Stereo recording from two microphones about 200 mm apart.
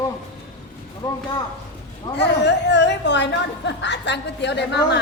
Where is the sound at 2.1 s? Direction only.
60° left (ahead or behind).